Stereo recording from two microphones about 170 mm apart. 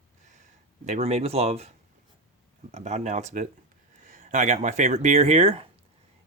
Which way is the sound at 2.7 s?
45° right (ahead or behind).